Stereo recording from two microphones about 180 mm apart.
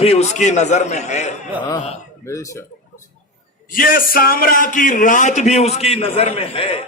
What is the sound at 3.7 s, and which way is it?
A man's voice, 50° left (ahead or behind).